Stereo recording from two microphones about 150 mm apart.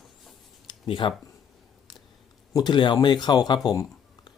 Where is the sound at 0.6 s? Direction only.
35° left (ahead or behind).